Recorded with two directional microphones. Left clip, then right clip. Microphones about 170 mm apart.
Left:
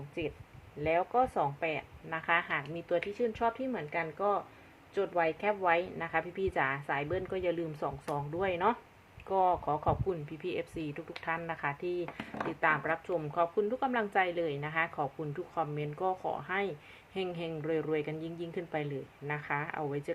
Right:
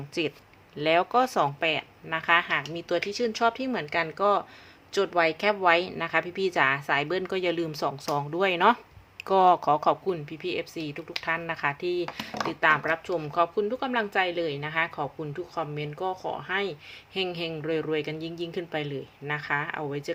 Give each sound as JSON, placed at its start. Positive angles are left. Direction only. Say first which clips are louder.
{"t": 0.1, "sound": "a woman's voice", "louder": "right 8 dB", "side_deg": -40}
{"t": 9.2, "sound": "speech", "louder": "right 9 dB", "side_deg": -45}
{"t": 10.2, "sound": "a woman's voice", "louder": "right 5 dB", "side_deg": -15}